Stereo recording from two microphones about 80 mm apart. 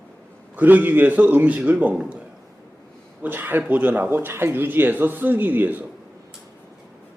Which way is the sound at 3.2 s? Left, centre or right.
Right.